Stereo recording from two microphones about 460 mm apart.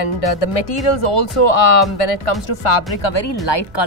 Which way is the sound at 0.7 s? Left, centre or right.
Left.